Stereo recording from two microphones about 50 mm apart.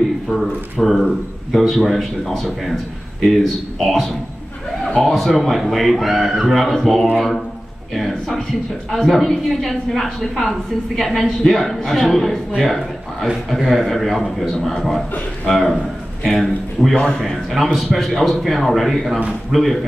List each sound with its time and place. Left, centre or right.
0.3 s speech: centre
16.9 s a man's voice: centre
17.2 s a man's voice: centre